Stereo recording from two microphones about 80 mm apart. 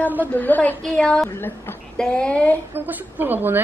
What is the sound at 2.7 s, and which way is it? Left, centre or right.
Speech, right.